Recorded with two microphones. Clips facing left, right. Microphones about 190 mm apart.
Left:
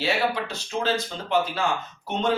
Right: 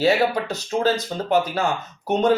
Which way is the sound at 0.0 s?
40° right (ahead or behind).